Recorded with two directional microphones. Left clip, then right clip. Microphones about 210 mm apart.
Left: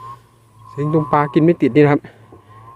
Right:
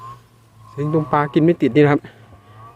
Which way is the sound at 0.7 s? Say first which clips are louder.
Left 2 dB; 20° left (ahead or behind).